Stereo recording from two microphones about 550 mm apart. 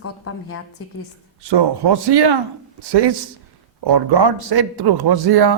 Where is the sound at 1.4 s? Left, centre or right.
Right.